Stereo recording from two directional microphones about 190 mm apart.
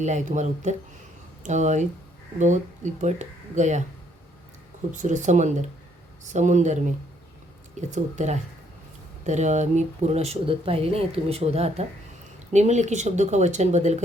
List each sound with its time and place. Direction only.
0.0 s speech: 40° right (ahead or behind)
4.9 s speech: 40° right (ahead or behind)